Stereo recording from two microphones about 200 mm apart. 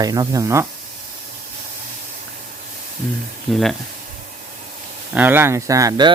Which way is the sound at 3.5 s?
Centre (ahead or behind).